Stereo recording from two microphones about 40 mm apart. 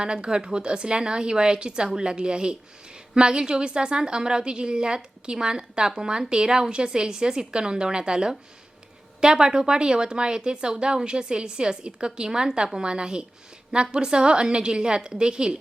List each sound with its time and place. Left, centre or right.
0.0 s speech: right